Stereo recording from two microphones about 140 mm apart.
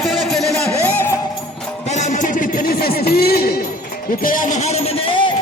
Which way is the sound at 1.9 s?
60° left (ahead or behind).